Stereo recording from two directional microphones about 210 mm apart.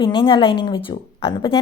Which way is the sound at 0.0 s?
25° left (ahead or behind).